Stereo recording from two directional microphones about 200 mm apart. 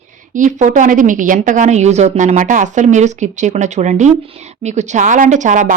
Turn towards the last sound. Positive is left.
turn(degrees=-40)  # may be behind; listen again after turning